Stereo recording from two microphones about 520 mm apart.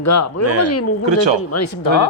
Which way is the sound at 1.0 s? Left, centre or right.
Right.